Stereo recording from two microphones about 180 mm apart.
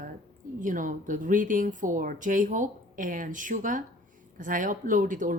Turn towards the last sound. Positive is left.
turn(degrees=-45)  # may be behind; listen again after turning